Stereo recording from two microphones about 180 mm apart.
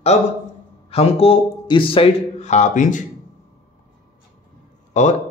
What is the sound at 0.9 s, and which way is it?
A man's voice, 35° left (ahead or behind).